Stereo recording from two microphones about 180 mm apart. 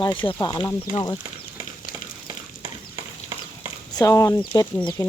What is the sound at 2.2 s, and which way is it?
Stir, 30° right (ahead or behind).